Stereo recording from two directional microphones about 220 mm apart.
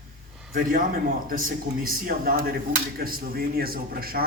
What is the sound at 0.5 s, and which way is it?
Speech, 40° right (ahead or behind).